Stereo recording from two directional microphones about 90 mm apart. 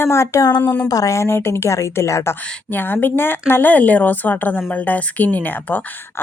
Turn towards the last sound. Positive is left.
turn(degrees=20)  # may be behind; listen again after turning